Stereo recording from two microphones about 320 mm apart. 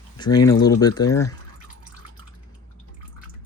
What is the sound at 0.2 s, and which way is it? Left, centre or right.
Speech, centre.